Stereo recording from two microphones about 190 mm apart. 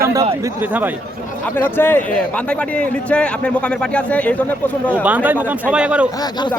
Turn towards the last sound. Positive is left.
turn(degrees=-5)  # may be behind; listen again after turning